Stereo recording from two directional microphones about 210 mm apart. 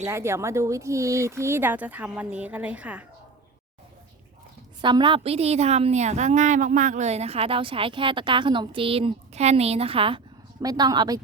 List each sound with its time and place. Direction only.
0.0 s speech: 10° right (ahead or behind)
4.8 s a woman's voice: 20° right (ahead or behind)